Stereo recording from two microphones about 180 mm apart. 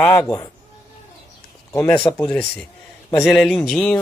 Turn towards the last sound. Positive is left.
turn(degrees=5)  # may be behind; listen again after turning